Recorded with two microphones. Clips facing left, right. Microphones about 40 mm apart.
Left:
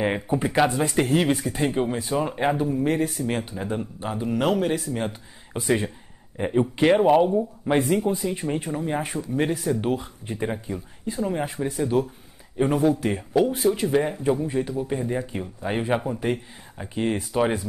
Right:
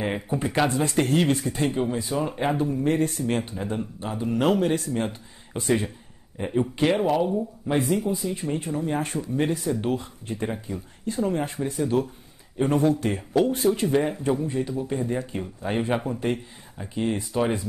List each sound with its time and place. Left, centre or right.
0.0 s speech: centre